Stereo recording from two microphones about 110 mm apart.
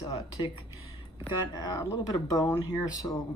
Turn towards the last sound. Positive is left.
turn(degrees=30)  # may be behind; listen again after turning